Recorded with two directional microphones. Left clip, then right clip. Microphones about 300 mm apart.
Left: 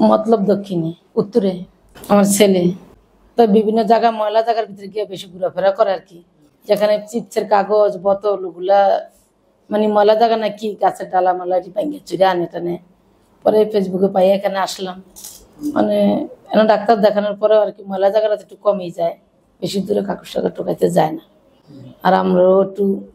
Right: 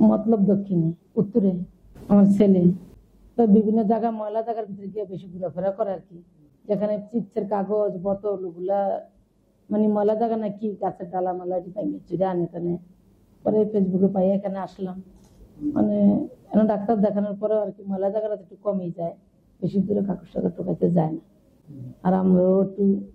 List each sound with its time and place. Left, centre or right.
0.0 s speech: centre
0.7 s speech: left
1.3 s a woman's voice: centre